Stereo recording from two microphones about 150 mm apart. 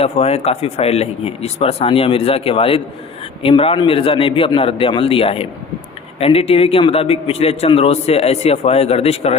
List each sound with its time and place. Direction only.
0.0 s a man's voice: 45° left (ahead or behind)